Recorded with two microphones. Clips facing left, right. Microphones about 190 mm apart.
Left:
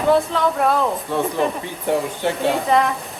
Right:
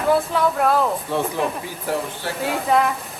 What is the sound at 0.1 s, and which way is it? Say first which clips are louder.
Speech: left 1 dB; 5° right (ahead or behind).